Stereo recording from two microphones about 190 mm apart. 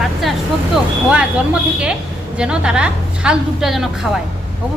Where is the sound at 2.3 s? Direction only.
5° right (ahead or behind).